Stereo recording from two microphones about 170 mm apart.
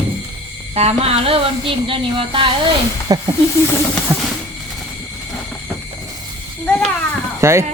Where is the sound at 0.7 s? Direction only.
40° right (ahead or behind).